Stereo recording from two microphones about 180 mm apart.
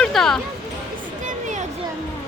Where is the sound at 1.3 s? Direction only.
45° right (ahead or behind).